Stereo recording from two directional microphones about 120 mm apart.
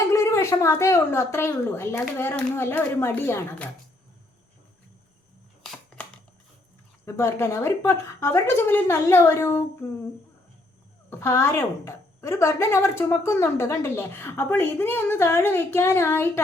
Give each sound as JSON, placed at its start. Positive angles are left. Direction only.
{"t": 0.1, "sound": "a woman's voice", "side_deg": 25}
{"t": 7.0, "sound": "a woman's voice", "side_deg": 20}
{"t": 11.1, "sound": "a woman's voice", "side_deg": 20}